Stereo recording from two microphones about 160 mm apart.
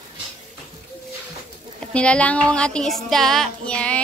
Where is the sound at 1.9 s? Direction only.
5° left (ahead or behind).